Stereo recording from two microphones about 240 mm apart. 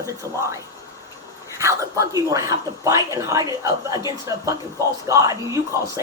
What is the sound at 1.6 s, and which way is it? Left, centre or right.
Speech, centre.